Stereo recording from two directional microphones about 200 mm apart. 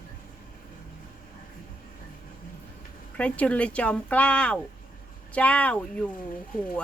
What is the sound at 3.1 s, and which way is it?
Speech, 5° left (ahead or behind).